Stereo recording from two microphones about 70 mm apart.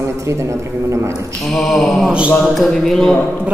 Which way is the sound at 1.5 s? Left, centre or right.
Centre.